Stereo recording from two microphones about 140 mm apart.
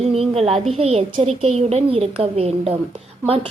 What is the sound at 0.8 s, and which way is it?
A woman's voice, 50° right (ahead or behind).